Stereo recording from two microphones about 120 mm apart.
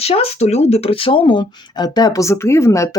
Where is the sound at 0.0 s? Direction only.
60° left (ahead or behind).